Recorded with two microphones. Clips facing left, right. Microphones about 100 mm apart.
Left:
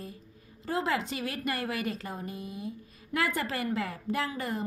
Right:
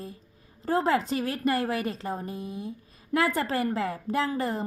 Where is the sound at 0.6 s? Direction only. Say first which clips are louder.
Right 5 dB; 40° right (ahead or behind).